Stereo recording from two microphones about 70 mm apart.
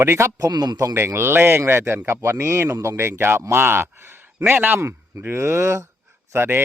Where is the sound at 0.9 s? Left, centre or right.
Right.